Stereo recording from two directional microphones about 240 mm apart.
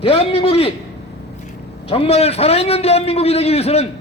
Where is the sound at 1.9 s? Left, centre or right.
Left.